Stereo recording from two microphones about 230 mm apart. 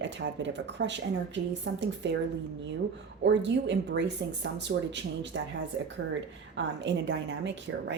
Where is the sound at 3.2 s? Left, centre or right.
Right.